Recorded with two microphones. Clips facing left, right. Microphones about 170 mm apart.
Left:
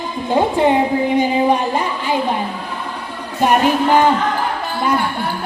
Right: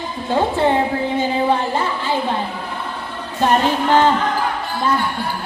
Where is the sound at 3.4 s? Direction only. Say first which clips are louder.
Left 2 dB; 15° left (ahead or behind).